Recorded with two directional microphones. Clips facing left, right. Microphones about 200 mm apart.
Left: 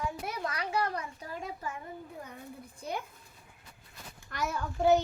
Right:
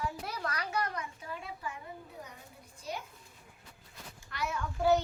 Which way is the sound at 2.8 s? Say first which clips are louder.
Left 3 dB; 55° left (ahead or behind).